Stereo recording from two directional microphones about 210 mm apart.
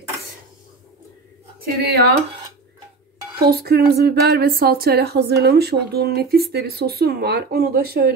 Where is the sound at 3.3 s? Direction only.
45° right (ahead or behind).